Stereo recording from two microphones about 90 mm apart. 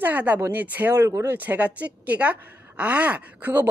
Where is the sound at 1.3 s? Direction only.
20° right (ahead or behind).